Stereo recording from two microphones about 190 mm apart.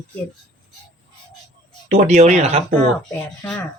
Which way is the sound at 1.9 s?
35° right (ahead or behind).